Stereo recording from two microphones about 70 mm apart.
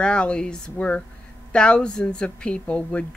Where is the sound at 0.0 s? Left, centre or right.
Centre.